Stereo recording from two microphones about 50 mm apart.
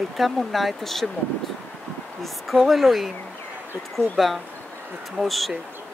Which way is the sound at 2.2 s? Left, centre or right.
Centre.